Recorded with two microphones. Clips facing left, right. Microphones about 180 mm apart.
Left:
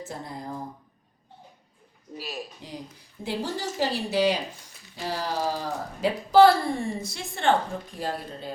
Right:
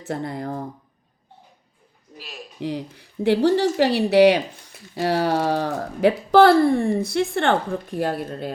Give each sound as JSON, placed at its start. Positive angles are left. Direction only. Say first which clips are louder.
{"t": 0.1, "sound": "speech", "louder": "right 13 dB", "side_deg": -70}
{"t": 2.6, "sound": "speech", "louder": "right 12 dB", "side_deg": -70}